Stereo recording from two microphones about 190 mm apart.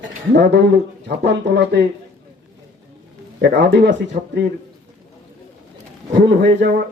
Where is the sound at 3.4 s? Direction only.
60° right (ahead or behind).